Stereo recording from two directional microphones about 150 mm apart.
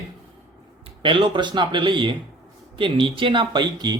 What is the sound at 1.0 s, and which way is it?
Speech, 35° right (ahead or behind).